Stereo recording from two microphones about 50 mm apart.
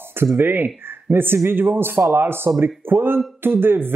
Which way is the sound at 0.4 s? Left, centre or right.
Right.